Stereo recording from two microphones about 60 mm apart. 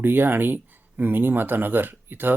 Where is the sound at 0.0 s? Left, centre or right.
Right.